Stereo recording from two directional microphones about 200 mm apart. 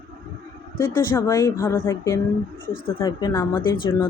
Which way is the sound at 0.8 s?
10° left (ahead or behind).